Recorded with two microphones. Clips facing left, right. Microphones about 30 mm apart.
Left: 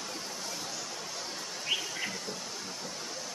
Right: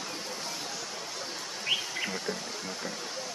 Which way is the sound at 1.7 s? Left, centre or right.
Right.